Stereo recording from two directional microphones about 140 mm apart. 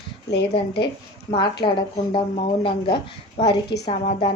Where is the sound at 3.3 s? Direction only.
40° left (ahead or behind).